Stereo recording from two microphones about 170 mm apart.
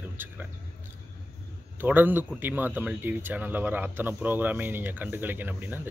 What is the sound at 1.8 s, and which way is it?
Speech, 10° right (ahead or behind).